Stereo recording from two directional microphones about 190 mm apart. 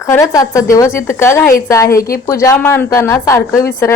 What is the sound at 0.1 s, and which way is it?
A woman's voice, 15° left (ahead or behind).